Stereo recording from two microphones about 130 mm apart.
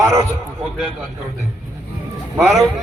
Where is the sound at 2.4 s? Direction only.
Centre (ahead or behind).